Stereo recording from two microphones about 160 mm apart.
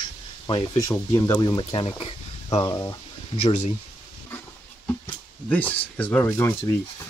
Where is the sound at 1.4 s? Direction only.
30° left (ahead or behind).